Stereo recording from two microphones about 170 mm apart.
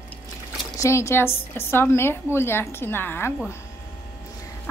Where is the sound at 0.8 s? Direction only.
15° left (ahead or behind).